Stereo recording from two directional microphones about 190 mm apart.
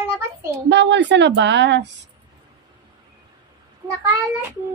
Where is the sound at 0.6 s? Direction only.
65° right (ahead or behind).